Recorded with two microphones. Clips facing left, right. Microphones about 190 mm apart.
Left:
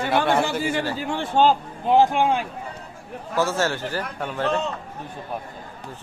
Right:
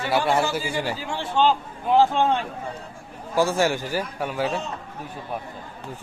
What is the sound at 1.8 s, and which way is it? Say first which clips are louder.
Speech: left 1 dB; 15° left (ahead or behind).